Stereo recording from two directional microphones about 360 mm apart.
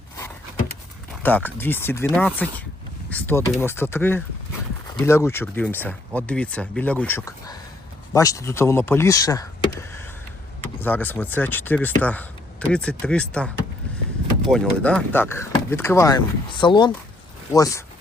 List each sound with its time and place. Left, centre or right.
1.2 s speech: centre
10.8 s speech: centre
14.5 s speech: centre